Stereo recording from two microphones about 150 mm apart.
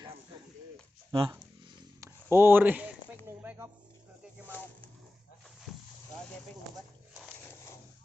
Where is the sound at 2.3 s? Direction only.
15° right (ahead or behind).